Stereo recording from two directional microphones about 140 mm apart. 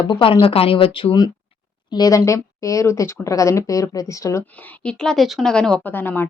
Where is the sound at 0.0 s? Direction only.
35° left (ahead or behind).